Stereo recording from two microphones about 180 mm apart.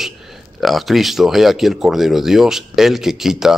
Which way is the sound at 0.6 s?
Centre (ahead or behind).